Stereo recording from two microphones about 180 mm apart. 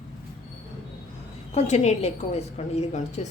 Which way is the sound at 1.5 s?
40° left (ahead or behind).